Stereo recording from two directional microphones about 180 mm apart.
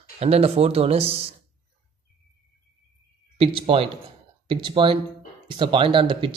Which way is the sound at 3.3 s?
30° right (ahead or behind).